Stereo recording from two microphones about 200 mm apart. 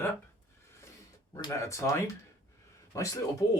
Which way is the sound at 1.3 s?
15° left (ahead or behind).